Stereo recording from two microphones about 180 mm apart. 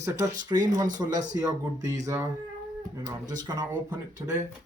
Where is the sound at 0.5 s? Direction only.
20° right (ahead or behind).